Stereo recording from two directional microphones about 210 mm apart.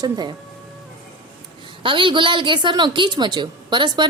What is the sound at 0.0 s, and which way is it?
Speech, 20° right (ahead or behind).